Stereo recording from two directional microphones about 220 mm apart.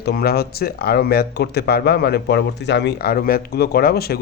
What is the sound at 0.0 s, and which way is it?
Speech, 45° left (ahead or behind).